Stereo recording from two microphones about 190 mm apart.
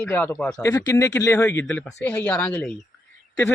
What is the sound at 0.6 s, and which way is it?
Speech, 15° left (ahead or behind).